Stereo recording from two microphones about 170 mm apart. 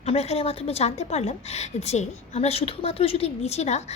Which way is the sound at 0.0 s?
40° left (ahead or behind).